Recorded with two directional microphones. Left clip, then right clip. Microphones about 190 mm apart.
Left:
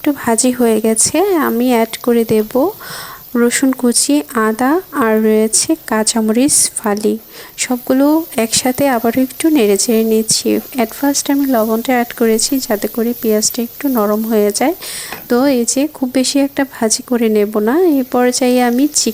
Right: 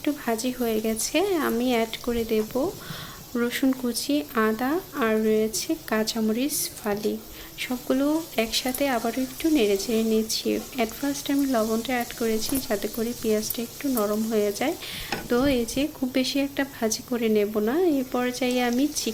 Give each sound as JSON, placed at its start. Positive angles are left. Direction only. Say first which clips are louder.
{"t": 0.0, "sound": "speech", "louder": "left 12 dB", "side_deg": 45}